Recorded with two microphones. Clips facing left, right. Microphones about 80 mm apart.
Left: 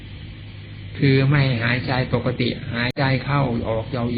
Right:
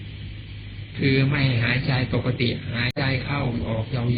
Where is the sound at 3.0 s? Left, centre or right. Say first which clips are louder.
Left 6 dB; left.